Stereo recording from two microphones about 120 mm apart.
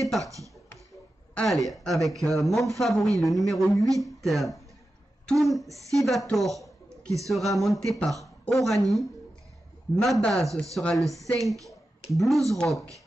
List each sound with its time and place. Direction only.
0.2 s speech: 25° right (ahead or behind)
1.3 s speech: 5° left (ahead or behind)
5.7 s speech: 25° right (ahead or behind)
5.9 s speech: centre (ahead or behind)
9.9 s speech: 5° left (ahead or behind)